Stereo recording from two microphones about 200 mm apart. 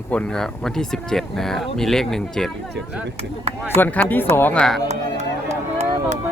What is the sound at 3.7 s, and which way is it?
Speech, 10° left (ahead or behind).